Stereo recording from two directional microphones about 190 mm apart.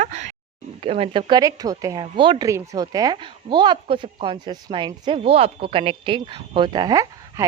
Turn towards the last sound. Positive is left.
turn(degrees=-20)  # may be behind; listen again after turning